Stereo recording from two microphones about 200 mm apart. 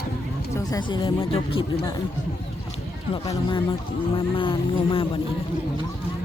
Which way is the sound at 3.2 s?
25° left (ahead or behind).